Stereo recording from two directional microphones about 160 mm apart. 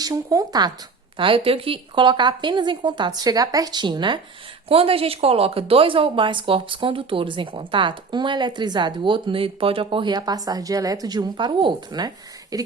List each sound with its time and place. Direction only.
0.0 s a woman's voice: 20° right (ahead or behind)